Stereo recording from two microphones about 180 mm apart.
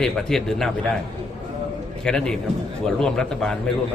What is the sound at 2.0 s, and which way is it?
A man's voice, 5° left (ahead or behind).